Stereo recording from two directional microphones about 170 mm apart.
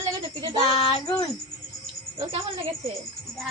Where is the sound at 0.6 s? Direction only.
35° left (ahead or behind).